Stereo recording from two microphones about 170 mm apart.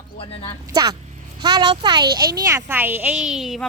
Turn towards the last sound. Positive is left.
turn(degrees=0)  # may be behind; listen again after turning